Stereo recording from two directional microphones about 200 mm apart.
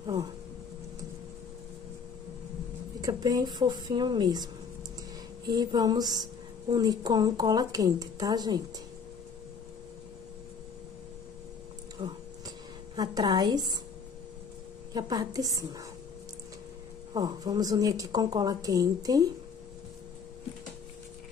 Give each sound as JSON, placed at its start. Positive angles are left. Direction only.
{"t": 0.0, "sound": "a sound", "side_deg": -15}
{"t": 3.0, "sound": "a woman's voice", "side_deg": -20}
{"t": 5.5, "sound": "a woman's voice", "side_deg": -20}
{"t": 12.0, "sound": "a sound", "side_deg": -20}
{"t": 15.0, "sound": "a woman's voice", "side_deg": -20}
{"t": 17.1, "sound": "a woman's voice", "side_deg": -20}